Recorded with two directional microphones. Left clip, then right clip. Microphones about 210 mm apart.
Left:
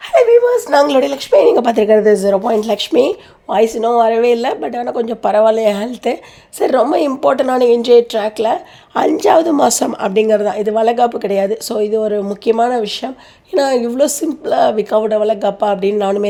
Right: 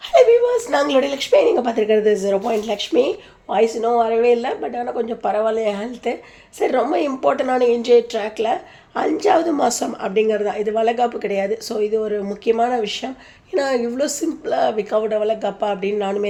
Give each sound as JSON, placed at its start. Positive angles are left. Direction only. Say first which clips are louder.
{"t": 0.1, "sound": "a woman's voice", "louder": "left 3 dB", "side_deg": 30}
{"t": 1.9, "sound": "speech", "louder": "left 6 dB", "side_deg": 25}
{"t": 2.1, "sound": "speech", "louder": "left 6 dB", "side_deg": 35}